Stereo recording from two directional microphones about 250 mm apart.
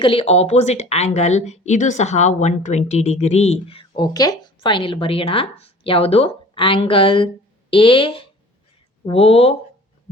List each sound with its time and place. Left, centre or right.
0.0 s speech: left